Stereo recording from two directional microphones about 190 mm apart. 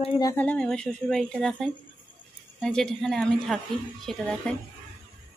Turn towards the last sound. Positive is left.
turn(degrees=5)  # may be behind; listen again after turning